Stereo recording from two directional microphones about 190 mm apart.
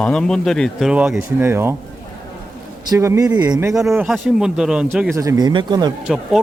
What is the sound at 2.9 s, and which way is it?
Speech, 15° right (ahead or behind).